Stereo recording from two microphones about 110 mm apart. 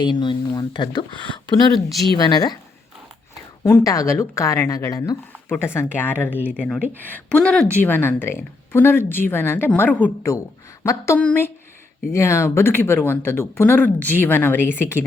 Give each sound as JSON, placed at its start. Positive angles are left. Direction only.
{"t": 0.0, "sound": "speech", "side_deg": 45}
{"t": 3.6, "sound": "a woman's voice", "side_deg": 25}
{"t": 5.3, "sound": "a woman's voice", "side_deg": 20}
{"t": 6.3, "sound": "speech", "side_deg": -15}
{"t": 7.0, "sound": "a woman's voice", "side_deg": 15}